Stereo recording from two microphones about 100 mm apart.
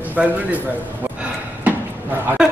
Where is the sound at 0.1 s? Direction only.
15° right (ahead or behind).